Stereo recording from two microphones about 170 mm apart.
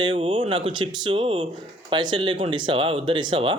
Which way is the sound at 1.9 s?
25° right (ahead or behind).